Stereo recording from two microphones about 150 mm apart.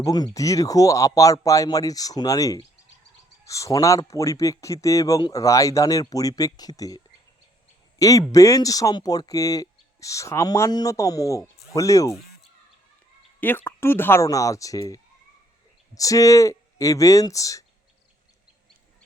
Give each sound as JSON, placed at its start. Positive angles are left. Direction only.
{"t": 0.0, "sound": "speech", "side_deg": 25}
{"t": 13.4, "sound": "speech", "side_deg": 15}